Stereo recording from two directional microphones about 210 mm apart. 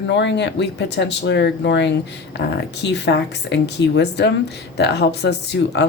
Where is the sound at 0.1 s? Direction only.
55° left (ahead or behind).